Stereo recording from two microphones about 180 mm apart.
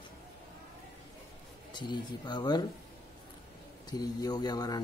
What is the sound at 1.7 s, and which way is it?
Speech, 25° left (ahead or behind).